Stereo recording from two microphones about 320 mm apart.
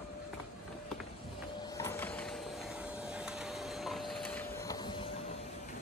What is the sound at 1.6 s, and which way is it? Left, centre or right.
Vacuum cleaner, centre.